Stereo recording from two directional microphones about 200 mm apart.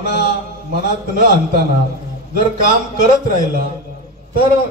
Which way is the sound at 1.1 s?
45° right (ahead or behind).